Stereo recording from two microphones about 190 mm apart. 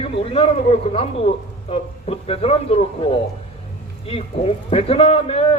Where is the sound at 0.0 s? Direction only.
30° left (ahead or behind).